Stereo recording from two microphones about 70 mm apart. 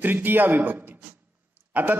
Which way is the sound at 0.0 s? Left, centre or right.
Right.